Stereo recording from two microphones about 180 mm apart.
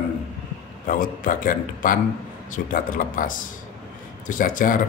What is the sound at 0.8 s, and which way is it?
Speech, 50° left (ahead or behind).